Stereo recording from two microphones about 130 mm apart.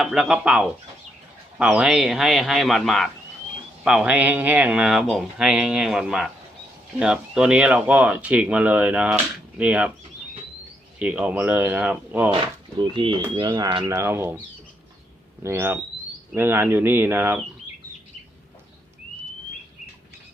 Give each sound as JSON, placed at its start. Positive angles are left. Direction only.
{"t": 0.0, "sound": "speech", "side_deg": -5}
{"t": 11.0, "sound": "speech", "side_deg": -10}
{"t": 13.0, "sound": "speech", "side_deg": -40}
{"t": 13.8, "sound": "speech", "side_deg": -20}
{"t": 15.4, "sound": "speech", "side_deg": -20}